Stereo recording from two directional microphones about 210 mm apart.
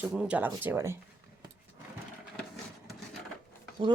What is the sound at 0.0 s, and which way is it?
Speech, 5° right (ahead or behind).